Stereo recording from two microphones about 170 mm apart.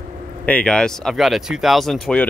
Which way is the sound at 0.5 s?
5° left (ahead or behind).